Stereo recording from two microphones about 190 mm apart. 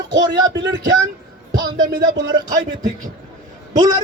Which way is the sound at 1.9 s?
55° right (ahead or behind).